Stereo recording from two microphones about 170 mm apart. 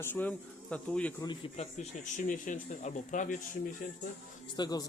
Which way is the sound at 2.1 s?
50° left (ahead or behind).